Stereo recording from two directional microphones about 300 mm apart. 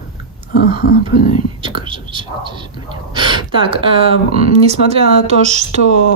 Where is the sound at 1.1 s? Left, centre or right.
Left.